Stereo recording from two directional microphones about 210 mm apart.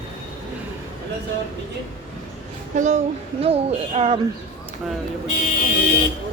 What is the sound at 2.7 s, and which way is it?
Speech, 35° right (ahead or behind).